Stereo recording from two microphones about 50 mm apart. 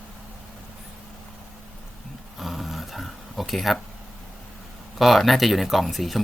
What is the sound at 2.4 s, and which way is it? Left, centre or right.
Dog, centre.